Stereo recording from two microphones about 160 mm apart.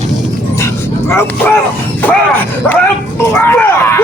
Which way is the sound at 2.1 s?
10° left (ahead or behind).